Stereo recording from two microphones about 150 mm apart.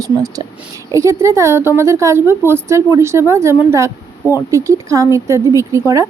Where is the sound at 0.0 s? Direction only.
25° right (ahead or behind).